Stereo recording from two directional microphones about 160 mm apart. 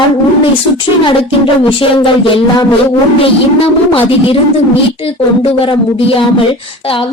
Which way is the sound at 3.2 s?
35° left (ahead or behind).